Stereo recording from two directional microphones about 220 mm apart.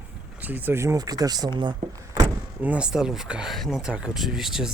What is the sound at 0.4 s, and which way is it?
Speech, 10° right (ahead or behind).